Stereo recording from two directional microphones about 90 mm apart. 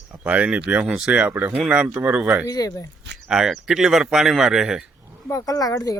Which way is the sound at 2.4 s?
45° left (ahead or behind).